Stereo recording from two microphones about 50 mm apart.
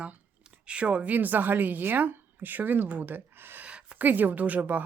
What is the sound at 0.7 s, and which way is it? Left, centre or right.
Speech, right.